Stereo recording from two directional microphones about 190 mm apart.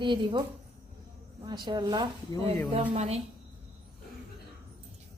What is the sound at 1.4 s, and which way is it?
Speech, 25° right (ahead or behind).